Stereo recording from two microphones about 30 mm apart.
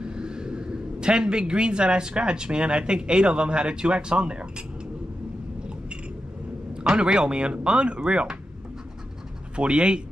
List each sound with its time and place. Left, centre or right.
0.0 s a man's voice: right
7.0 s speech: right
9.6 s speech: right